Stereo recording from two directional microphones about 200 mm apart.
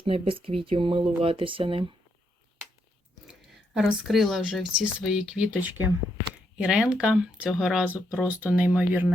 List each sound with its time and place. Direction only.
0.0 s speech: 25° right (ahead or behind)
3.8 s speech: centre (ahead or behind)